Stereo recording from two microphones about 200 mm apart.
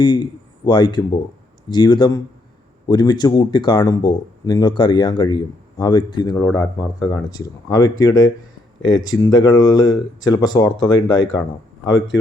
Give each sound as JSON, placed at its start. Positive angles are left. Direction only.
{"t": 0.6, "sound": "speech", "side_deg": 20}